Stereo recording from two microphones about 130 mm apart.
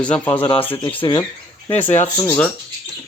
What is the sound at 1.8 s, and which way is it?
Speech, 15° left (ahead or behind).